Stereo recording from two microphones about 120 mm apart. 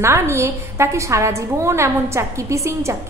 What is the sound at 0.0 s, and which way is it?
A woman's voice, 25° right (ahead or behind).